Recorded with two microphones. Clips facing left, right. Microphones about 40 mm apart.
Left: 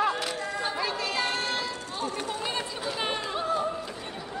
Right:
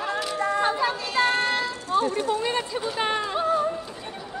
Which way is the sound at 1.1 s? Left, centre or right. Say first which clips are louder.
Right 6 dB; right.